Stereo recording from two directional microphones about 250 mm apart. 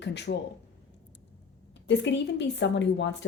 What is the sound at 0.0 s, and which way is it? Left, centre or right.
Speech, left.